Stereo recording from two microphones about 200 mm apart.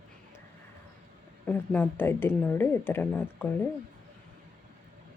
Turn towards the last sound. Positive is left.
turn(degrees=10)  # may be behind; listen again after turning